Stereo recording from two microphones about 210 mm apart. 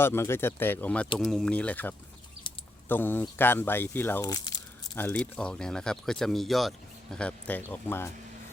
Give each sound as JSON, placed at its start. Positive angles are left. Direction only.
{"t": 0.0, "sound": "speech", "side_deg": 10}
{"t": 2.5, "sound": "a sound", "side_deg": 25}
{"t": 2.9, "sound": "speech", "side_deg": 10}
{"t": 4.9, "sound": "speech", "side_deg": 10}